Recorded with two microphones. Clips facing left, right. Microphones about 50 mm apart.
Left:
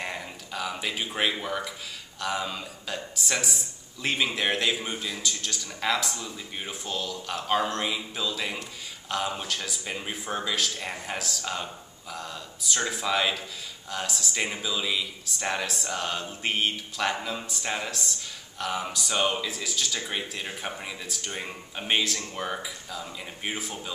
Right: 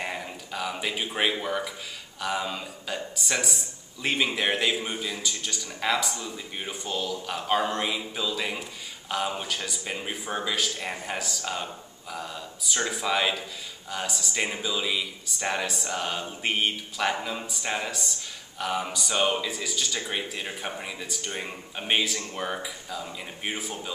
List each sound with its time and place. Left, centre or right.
0.0 s a man's voice: centre